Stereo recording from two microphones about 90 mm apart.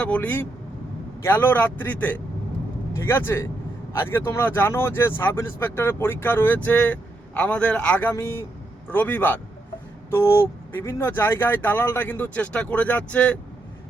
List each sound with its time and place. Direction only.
0.0 s speech: 15° left (ahead or behind)
8.1 s speech: 30° left (ahead or behind); by 13.4 s 15° left (ahead or behind)